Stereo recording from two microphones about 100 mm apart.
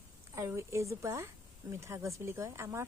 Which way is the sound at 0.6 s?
30° right (ahead or behind).